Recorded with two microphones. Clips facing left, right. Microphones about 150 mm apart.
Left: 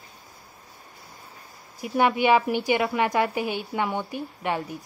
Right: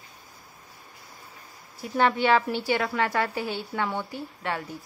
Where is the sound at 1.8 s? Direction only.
15° left (ahead or behind).